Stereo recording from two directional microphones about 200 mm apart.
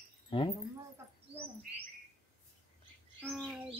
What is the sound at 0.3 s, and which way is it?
Speech, 25° left (ahead or behind).